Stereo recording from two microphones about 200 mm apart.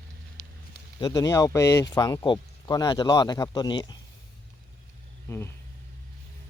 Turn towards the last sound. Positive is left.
turn(degrees=10)  # may be behind; listen again after turning